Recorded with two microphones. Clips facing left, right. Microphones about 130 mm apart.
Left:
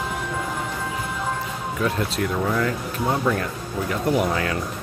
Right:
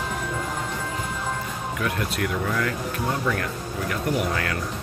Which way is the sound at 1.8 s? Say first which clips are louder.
Left 3 dB; 30° left (ahead or behind).